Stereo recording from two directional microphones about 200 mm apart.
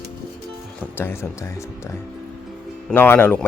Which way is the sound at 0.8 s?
10° left (ahead or behind).